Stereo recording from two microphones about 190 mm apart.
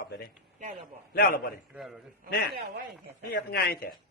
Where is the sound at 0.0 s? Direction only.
60° left (ahead or behind).